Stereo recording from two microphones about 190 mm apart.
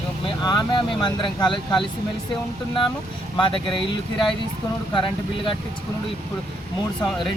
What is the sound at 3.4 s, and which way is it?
Speech, 25° left (ahead or behind).